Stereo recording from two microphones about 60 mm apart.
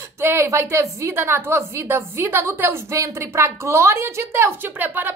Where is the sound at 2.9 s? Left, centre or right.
Right.